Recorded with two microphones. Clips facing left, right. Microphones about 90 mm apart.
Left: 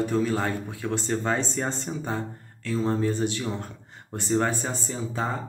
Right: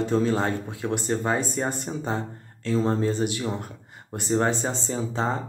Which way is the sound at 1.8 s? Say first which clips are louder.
Right 1 dB; 25° right (ahead or behind).